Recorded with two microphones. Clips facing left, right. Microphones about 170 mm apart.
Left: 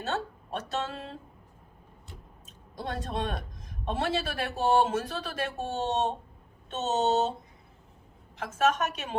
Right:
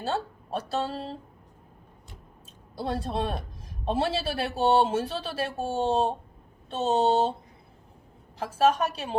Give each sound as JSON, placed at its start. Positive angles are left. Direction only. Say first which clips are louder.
{"t": 0.0, "sound": "speech", "louder": "right 2 dB", "side_deg": -30}
{"t": 2.7, "sound": "speech", "louder": "right 4 dB", "side_deg": -30}
{"t": 8.4, "sound": "speech", "louder": "right 3 dB", "side_deg": -35}